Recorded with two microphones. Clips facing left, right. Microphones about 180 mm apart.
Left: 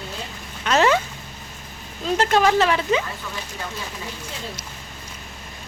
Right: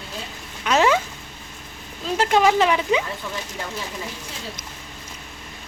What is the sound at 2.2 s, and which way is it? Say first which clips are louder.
Speech: right 1 dB; 15° right (ahead or behind).